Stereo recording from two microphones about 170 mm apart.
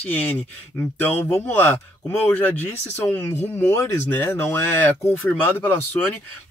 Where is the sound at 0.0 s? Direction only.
10° left (ahead or behind).